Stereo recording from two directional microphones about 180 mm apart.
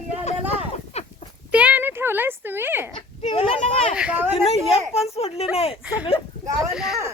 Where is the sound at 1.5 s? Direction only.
5° right (ahead or behind).